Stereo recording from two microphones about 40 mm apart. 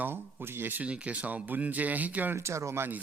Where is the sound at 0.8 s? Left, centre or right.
Right.